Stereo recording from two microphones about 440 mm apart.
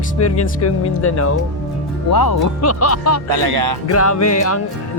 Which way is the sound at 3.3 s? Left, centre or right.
Right.